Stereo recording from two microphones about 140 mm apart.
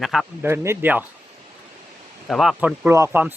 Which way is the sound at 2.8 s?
20° right (ahead or behind).